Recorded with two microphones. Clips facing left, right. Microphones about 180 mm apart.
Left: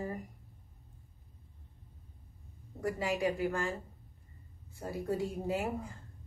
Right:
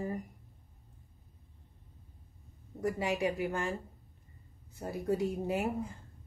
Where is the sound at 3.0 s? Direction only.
20° right (ahead or behind).